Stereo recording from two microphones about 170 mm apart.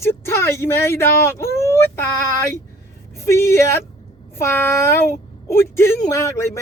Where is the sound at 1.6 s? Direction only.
15° left (ahead or behind).